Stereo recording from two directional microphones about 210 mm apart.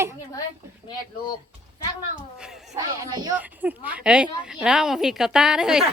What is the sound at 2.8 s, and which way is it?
Speech, 20° right (ahead or behind).